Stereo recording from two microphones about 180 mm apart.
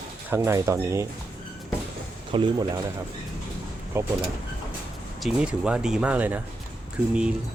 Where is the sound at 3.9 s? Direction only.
15° right (ahead or behind).